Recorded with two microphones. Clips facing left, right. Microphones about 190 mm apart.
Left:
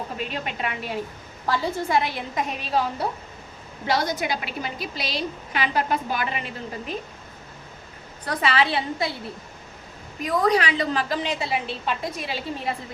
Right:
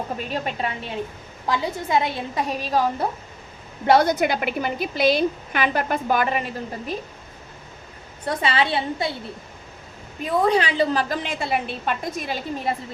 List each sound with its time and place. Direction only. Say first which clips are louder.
0.2 s a woman's voice: right 3 dB; 40° right (ahead or behind)
2.5 s a woman's voice: right 3 dB; 40° right (ahead or behind)
3.8 s a woman's voice: right 7 dB; 55° right (ahead or behind)
8.2 s a woman's voice: right 1 dB; 30° right (ahead or behind)
10.2 s a woman's voice: right 1 dB; 30° right (ahead or behind)
11.1 s a woman's voice: right 1 dB; 50° right (ahead or behind)